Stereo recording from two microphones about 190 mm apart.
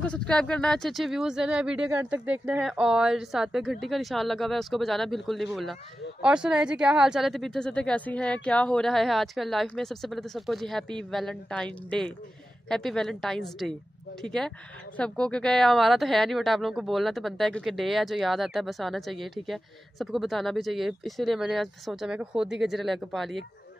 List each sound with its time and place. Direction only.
0.0 s speech: 5° left (ahead or behind)